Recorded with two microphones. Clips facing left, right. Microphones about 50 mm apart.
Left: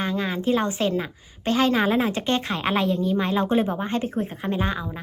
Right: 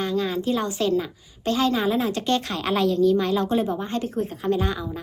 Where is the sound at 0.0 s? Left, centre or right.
Left.